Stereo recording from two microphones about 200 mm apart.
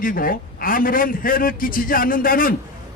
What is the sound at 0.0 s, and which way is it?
A man's voice, 45° left (ahead or behind).